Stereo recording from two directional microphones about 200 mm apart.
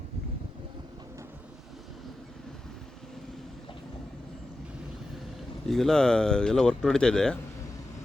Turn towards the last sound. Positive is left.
turn(degrees=5)  # may be behind; listen again after turning